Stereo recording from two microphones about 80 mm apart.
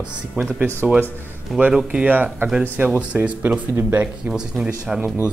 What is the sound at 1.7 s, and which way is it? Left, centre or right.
Speech, centre.